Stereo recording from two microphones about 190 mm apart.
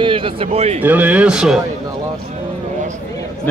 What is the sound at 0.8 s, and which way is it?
Speech, 10° right (ahead or behind).